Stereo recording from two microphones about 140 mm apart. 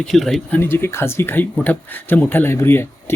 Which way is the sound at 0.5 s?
15° left (ahead or behind).